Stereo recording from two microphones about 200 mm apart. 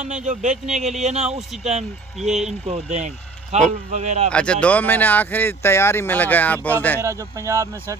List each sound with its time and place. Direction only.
0.0 s speech: 35° right (ahead or behind)
2.1 s speech: centre (ahead or behind)
2.6 s speech: 35° right (ahead or behind)
4.3 s speech: 5° left (ahead or behind)
7.0 s speech: 15° right (ahead or behind)